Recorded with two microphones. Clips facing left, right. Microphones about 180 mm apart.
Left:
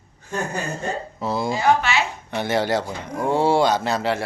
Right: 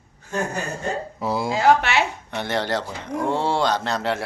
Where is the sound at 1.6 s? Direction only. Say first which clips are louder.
Right 3 dB; 80° right.